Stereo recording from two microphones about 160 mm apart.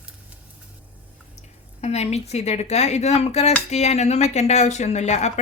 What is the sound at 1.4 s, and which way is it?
Speech, 40° left (ahead or behind).